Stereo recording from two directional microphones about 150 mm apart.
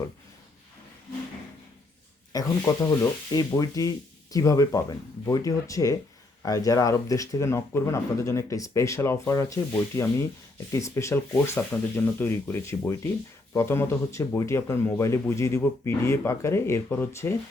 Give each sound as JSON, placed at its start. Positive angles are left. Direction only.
{"t": 2.3, "sound": "speech", "side_deg": 20}